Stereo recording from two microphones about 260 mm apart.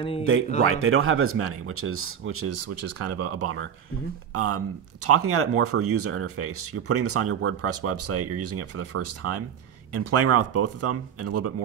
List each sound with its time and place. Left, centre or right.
0.2 s speech: right